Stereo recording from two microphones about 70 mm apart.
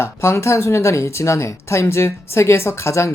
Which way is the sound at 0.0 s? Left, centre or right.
Left.